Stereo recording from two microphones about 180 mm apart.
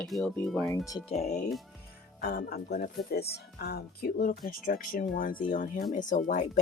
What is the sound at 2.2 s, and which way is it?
Speech, 60° left (ahead or behind).